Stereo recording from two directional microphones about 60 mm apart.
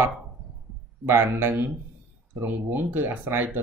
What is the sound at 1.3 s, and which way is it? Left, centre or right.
Speech, right.